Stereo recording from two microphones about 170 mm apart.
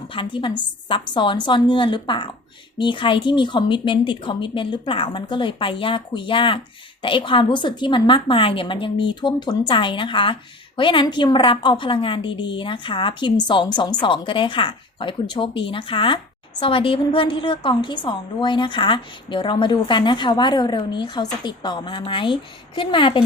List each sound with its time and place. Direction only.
0.1 s speech: 30° left (ahead or behind)